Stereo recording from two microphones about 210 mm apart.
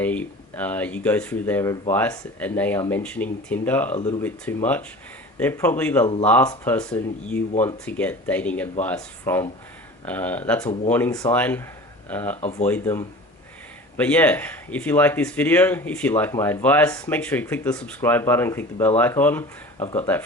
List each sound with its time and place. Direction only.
0.0 s speech: 5° left (ahead or behind)
12.4 s speech: 30° left (ahead or behind)
12.6 s speech: 10° left (ahead or behind)